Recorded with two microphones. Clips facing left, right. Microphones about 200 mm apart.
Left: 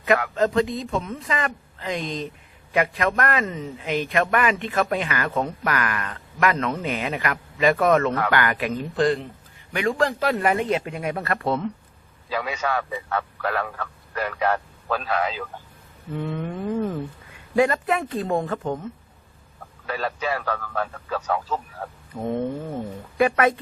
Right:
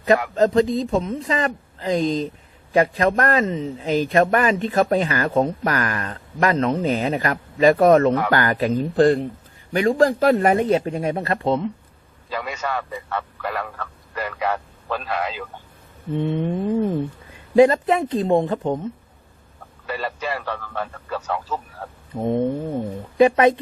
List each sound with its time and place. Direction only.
0.3 s a man's voice: 35° right (ahead or behind); by 11.7 s 20° right (ahead or behind)
12.3 s a man's voice: 5° left (ahead or behind)
16.1 s speech: 25° right (ahead or behind)
19.9 s speech: 5° right (ahead or behind)
22.1 s speech: 20° right (ahead or behind)